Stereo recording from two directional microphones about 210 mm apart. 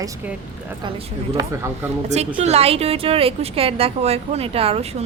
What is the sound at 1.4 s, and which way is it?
Speech, 10° right (ahead or behind).